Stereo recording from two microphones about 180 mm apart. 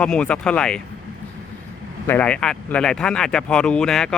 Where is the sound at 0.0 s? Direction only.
5° left (ahead or behind).